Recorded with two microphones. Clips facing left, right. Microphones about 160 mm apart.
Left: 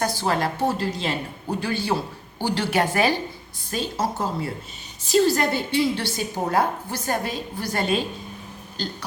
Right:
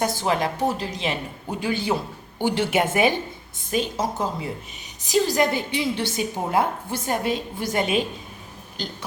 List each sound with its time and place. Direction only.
0.0 s a woman's voice: 20° right (ahead or behind)